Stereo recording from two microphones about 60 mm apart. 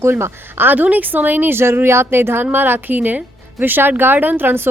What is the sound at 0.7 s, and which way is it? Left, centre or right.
A woman's voice, right.